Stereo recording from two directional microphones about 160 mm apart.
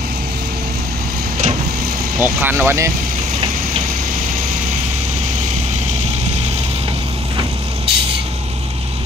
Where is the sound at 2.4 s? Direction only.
15° right (ahead or behind).